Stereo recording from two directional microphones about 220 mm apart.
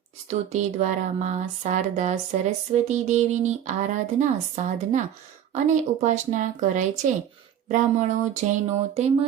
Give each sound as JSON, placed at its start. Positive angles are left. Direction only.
{"t": 0.3, "sound": "speech", "side_deg": -30}